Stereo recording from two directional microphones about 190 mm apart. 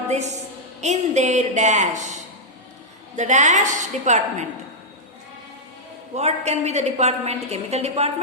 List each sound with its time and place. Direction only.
0.1 s a woman's voice: 35° right (ahead or behind)
6.1 s a woman's voice: 35° right (ahead or behind)